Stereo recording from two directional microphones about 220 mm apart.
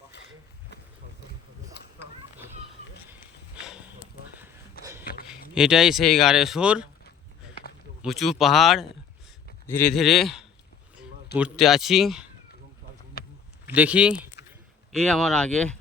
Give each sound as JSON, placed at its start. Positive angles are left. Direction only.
{"t": 5.5, "sound": "speech", "side_deg": 0}
{"t": 8.0, "sound": "speech", "side_deg": 0}
{"t": 13.2, "sound": "a sound", "side_deg": 45}
{"t": 13.7, "sound": "speech", "side_deg": -5}